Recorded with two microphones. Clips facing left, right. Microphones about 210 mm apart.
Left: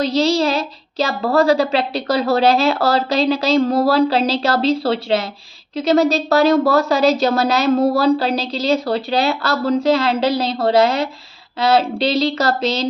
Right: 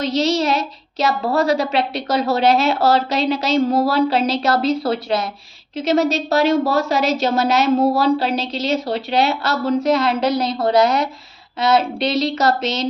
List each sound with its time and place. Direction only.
0.0 s a woman's voice: 30° left (ahead or behind)